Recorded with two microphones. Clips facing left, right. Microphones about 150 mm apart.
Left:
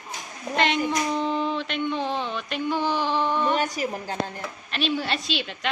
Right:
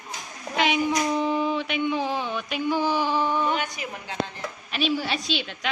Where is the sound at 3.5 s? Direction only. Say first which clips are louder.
Left 4 dB; 35° left (ahead or behind).